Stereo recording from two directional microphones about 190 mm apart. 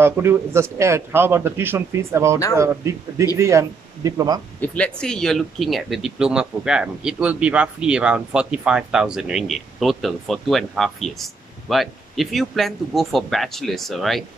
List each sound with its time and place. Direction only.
0.0 s a man's voice: 15° right (ahead or behind)
4.6 s speech: 5° left (ahead or behind)